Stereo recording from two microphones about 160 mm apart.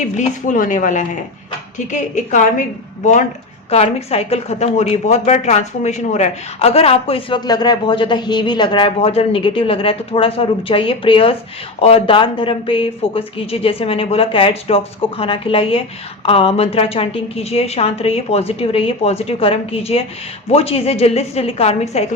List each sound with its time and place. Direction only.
0.0 s a woman's voice: 50° left (ahead or behind)
3.7 s a woman's voice: 40° left (ahead or behind)